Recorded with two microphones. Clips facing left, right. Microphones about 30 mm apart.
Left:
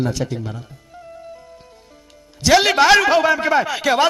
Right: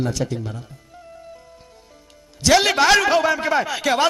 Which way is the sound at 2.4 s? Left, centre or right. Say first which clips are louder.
Left 2 dB; centre.